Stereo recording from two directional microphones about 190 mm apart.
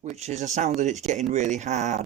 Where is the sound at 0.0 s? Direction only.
35° right (ahead or behind).